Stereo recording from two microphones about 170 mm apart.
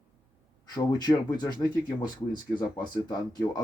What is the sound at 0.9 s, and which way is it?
Speech, 25° left (ahead or behind).